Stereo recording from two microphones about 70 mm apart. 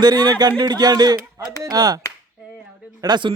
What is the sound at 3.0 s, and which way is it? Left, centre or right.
Speech, right.